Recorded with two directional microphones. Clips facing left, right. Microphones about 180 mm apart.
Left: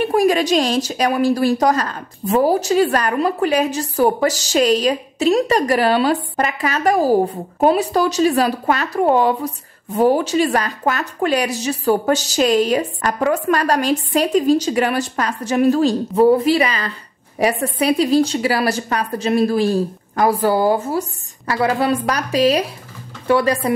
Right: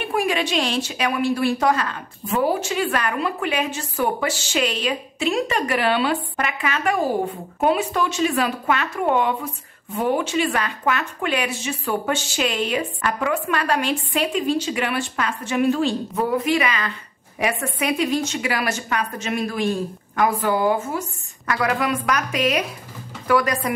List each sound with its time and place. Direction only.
0.0 s a woman's voice: 40° left (ahead or behind)